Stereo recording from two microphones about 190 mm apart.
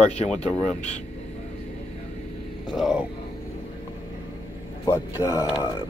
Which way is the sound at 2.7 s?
5° right (ahead or behind).